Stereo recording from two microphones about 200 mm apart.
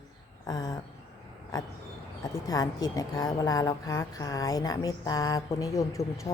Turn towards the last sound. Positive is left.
turn(degrees=15)  # may be behind; listen again after turning